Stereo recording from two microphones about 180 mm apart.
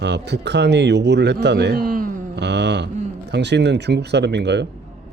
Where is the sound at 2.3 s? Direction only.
70° right (ahead or behind).